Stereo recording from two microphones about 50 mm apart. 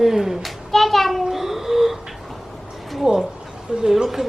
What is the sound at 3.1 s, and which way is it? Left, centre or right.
Speech, centre.